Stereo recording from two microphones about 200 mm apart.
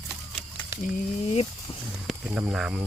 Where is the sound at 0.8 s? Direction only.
30° left (ahead or behind).